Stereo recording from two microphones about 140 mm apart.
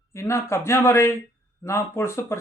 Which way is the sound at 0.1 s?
20° left (ahead or behind).